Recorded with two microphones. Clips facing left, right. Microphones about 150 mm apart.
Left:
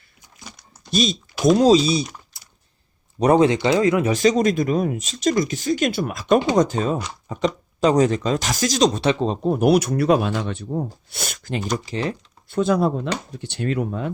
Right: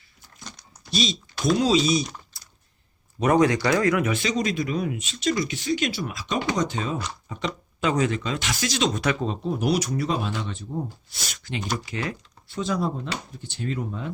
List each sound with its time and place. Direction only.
0.3 s a sound: 5° left (ahead or behind)
0.9 s speech: 50° left (ahead or behind); by 2.0 s 30° left (ahead or behind)
2.3 s a sound: 20° left (ahead or behind)
3.2 s speech: 30° left (ahead or behind)
4.1 s speech: 40° left (ahead or behind)
6.6 s speech: 45° left (ahead or behind)
9.5 s speech: 55° left (ahead or behind)
11.9 s speech: 35° left (ahead or behind)
12.5 s speech: 55° left (ahead or behind)